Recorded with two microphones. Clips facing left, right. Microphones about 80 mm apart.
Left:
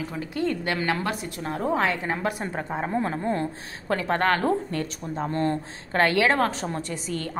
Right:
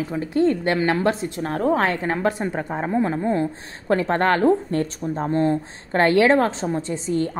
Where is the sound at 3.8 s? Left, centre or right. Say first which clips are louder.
Right 4 dB; right.